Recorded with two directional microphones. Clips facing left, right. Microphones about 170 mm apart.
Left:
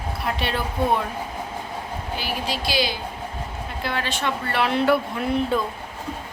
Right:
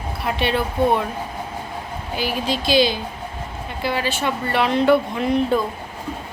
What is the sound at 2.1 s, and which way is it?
Speech, 20° right (ahead or behind).